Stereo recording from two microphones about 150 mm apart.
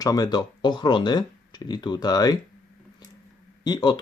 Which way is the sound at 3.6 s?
30° left (ahead or behind).